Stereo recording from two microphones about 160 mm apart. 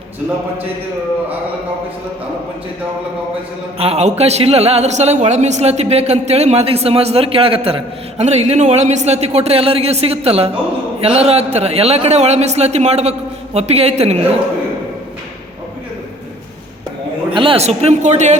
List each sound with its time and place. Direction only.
3.8 s a woman's voice: 40° right (ahead or behind)
17.3 s a woman's voice: 35° right (ahead or behind)